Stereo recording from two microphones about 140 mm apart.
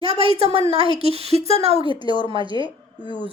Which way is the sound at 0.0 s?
35° left (ahead or behind).